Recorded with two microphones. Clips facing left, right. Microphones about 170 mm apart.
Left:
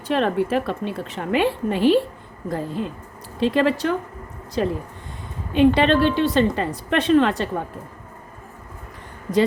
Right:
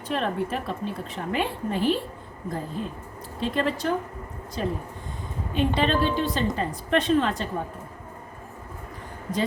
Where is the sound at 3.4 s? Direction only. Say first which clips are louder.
Left 6 dB; 85° left.